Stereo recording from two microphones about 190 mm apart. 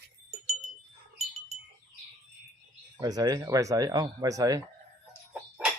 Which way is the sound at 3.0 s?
20° right (ahead or behind).